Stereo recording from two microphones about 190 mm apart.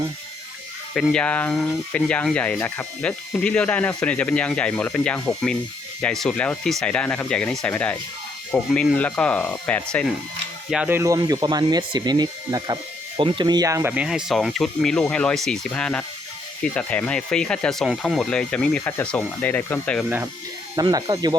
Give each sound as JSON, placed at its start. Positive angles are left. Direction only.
{"t": 0.9, "sound": "speech", "side_deg": 5}
{"t": 10.7, "sound": "speech", "side_deg": -5}
{"t": 20.7, "sound": "speech", "side_deg": -20}